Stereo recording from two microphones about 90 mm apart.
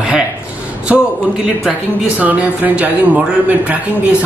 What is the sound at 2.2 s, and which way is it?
Speech, 15° right (ahead or behind).